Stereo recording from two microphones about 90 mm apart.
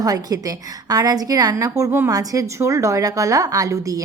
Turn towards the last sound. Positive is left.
turn(degrees=-40)  # may be behind; listen again after turning